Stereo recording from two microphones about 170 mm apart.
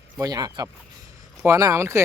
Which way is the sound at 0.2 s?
20° right (ahead or behind).